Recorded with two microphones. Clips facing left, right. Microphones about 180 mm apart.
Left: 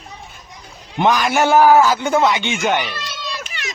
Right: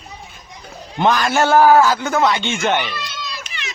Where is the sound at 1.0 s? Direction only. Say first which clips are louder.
Even; 15° left (ahead or behind).